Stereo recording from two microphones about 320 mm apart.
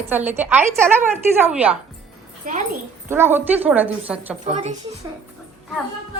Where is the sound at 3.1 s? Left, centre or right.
Centre.